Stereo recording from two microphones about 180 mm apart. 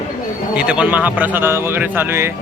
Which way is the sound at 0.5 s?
5° right (ahead or behind).